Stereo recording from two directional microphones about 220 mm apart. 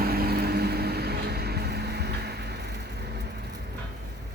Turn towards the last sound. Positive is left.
turn(degrees=-50)  # may be behind; listen again after turning